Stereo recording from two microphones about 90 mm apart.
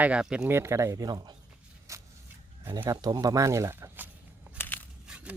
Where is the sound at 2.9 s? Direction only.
45° right (ahead or behind); by 4.1 s 25° right (ahead or behind).